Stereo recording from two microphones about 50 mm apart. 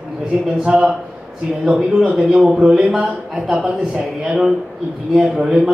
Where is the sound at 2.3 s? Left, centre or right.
Centre.